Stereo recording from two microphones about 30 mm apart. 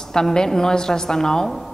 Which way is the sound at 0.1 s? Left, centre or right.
Left.